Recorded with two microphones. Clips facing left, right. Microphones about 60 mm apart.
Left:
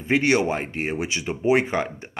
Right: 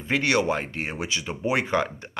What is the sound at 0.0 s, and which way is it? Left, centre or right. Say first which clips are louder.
Speech: left 3 dB; left.